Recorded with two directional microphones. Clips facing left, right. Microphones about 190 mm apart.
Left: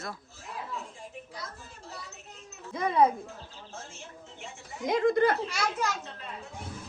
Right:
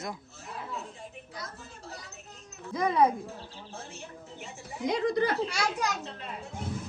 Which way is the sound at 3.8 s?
35° right (ahead or behind).